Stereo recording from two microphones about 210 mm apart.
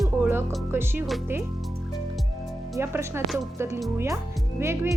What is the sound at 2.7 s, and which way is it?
Speech, 10° right (ahead or behind).